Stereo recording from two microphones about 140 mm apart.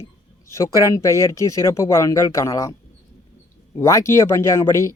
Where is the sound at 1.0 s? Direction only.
20° left (ahead or behind).